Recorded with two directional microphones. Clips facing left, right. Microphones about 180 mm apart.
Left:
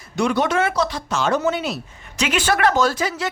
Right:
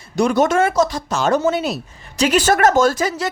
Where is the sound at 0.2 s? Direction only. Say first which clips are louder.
Right 4 dB; 45° right (ahead or behind).